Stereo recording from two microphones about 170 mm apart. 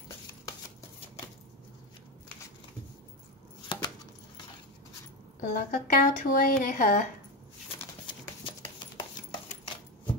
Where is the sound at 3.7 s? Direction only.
30° left (ahead or behind).